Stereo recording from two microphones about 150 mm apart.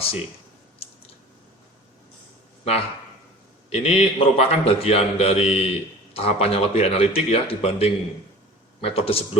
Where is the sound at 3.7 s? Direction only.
45° left (ahead or behind).